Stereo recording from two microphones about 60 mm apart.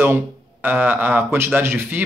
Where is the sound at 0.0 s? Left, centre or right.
Right.